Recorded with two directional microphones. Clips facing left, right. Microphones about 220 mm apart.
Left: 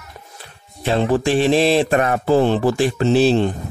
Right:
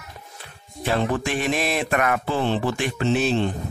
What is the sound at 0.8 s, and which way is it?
Speech, 30° left (ahead or behind).